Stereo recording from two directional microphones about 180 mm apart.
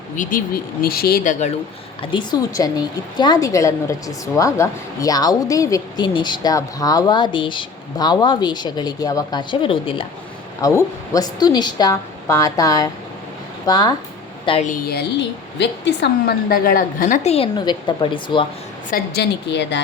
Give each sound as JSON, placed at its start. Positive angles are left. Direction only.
{"t": 0.2, "sound": "a woman's voice", "side_deg": 50}
{"t": 2.0, "sound": "a woman's voice", "side_deg": 25}
{"t": 10.6, "sound": "a woman's voice", "side_deg": 15}
{"t": 14.7, "sound": "a woman's voice", "side_deg": 60}
{"t": 18.9, "sound": "a woman's voice", "side_deg": 60}